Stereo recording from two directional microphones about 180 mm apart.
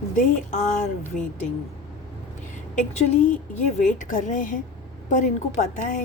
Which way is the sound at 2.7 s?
45° left (ahead or behind).